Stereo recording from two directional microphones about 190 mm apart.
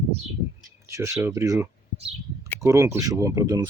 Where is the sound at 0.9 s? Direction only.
15° right (ahead or behind).